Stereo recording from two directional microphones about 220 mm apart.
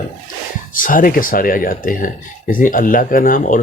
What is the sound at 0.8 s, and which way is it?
Speech, 40° left (ahead or behind).